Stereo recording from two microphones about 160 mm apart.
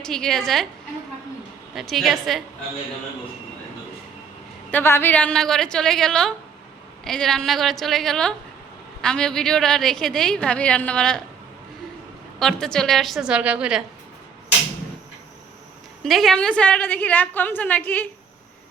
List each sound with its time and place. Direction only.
0.0 s a woman's voice: 5° left (ahead or behind)
1.7 s a woman's voice: centre (ahead or behind)
4.7 s a woman's voice: 15° left (ahead or behind)
12.4 s a woman's voice: 5° left (ahead or behind)
16.0 s a woman's voice: centre (ahead or behind)